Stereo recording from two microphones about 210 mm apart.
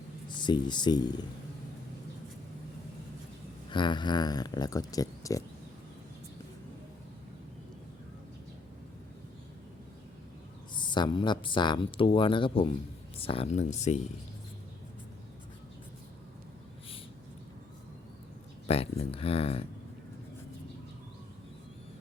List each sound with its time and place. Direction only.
0.3 s speech: 20° left (ahead or behind)
3.7 s speech: 20° left (ahead or behind)
10.8 s speech: 20° left (ahead or behind)
18.7 s speech: 30° left (ahead or behind)